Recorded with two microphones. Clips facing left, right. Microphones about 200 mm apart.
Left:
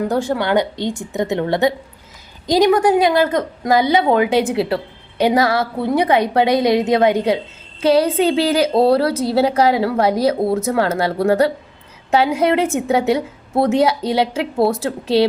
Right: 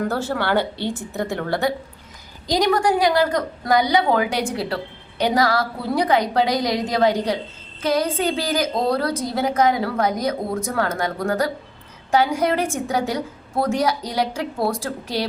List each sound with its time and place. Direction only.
0.1 s a woman's voice: 15° left (ahead or behind)